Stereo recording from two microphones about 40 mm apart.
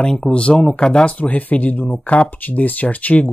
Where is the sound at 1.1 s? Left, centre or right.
Left.